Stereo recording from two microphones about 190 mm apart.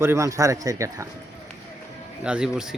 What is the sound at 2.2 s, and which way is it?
Speech, 5° right (ahead or behind).